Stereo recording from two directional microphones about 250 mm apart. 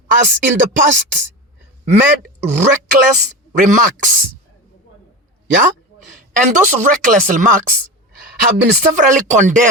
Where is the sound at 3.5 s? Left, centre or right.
Right.